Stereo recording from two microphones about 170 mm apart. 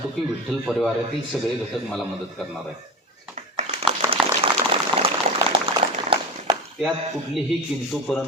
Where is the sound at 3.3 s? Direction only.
45° right (ahead or behind).